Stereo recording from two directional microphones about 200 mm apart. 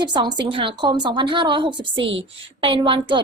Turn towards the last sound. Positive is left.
turn(degrees=-25)  # may be behind; listen again after turning